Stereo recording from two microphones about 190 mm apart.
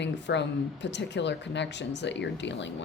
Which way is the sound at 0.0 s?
65° left (ahead or behind).